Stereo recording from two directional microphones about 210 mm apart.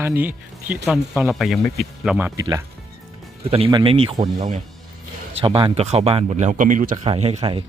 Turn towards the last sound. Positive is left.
turn(degrees=-25)  # may be behind; listen again after turning